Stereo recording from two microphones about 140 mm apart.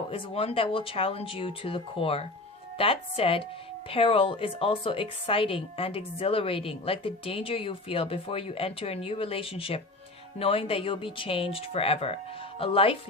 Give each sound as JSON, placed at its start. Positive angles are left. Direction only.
{"t": 0.1, "sound": "a woman's voice", "side_deg": 45}